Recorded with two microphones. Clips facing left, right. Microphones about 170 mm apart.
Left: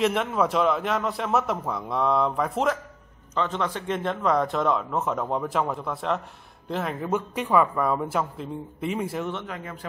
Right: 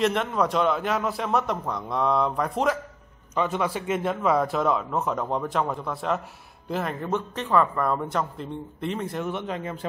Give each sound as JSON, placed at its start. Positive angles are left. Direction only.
{"t": 0.0, "sound": "a man's voice", "side_deg": 5}
{"t": 3.3, "sound": "a man's voice", "side_deg": -10}
{"t": 9.3, "sound": "a man's voice", "side_deg": -20}